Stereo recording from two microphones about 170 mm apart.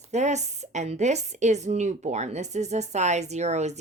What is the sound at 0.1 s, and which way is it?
A woman's voice, 40° right (ahead or behind).